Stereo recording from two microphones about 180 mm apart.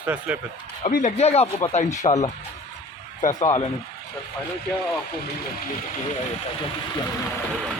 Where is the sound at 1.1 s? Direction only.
35° left (ahead or behind).